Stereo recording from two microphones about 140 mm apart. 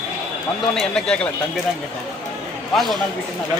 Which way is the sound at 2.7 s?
Centre (ahead or behind).